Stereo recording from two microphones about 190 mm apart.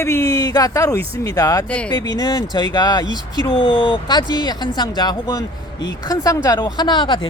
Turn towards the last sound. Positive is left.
turn(degrees=25)  # may be behind; listen again after turning